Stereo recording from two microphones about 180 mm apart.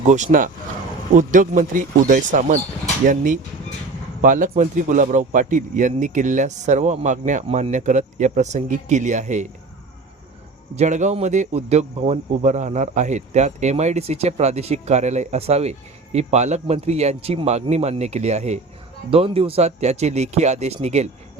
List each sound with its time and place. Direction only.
0.1 s a man's voice: 45° right (ahead or behind)
4.2 s a man's voice: 45° right (ahead or behind)
10.8 s speech: 40° right (ahead or behind)